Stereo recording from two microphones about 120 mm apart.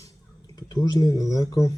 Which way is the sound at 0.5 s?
35° left (ahead or behind).